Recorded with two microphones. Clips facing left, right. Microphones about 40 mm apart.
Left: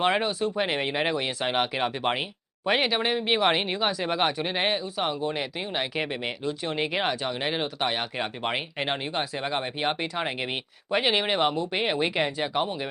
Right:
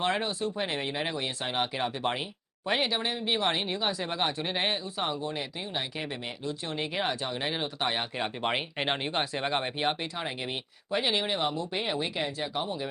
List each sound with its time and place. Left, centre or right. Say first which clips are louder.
0.0 s speech: left 5 dB; left
4.4 s speech: left 4 dB; left
5.3 s speech: left 4 dB; left
8.4 s speech: right 1 dB; centre
9.7 s speech: left 2 dB; centre
10.2 s speech: left 5 dB; left